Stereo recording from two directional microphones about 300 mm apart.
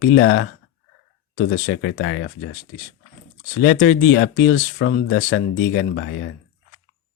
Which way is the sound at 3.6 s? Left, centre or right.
Left.